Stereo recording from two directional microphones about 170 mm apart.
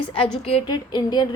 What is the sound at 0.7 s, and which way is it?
Speech, 25° left (ahead or behind).